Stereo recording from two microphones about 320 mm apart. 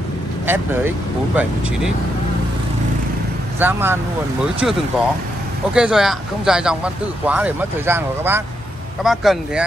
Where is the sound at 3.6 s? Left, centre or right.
Centre.